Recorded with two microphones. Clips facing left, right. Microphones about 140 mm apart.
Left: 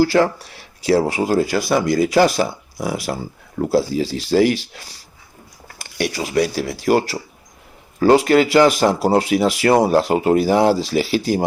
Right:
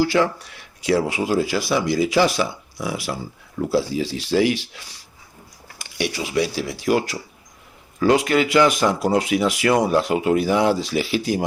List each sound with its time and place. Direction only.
0.0 s speech: 40° left (ahead or behind)